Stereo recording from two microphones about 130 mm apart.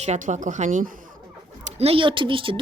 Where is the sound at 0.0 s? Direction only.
65° right (ahead or behind).